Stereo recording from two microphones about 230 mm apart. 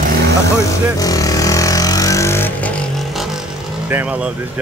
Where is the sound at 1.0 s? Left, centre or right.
Centre.